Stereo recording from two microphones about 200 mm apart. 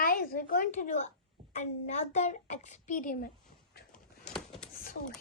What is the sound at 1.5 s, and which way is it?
A child's voice, 35° left (ahead or behind).